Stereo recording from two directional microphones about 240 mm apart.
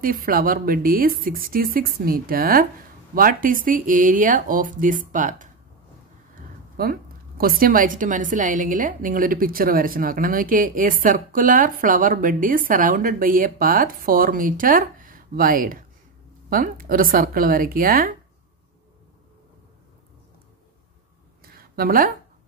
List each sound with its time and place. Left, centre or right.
0.0 s a woman's voice: right
6.8 s a woman's voice: right
21.5 s a sound: right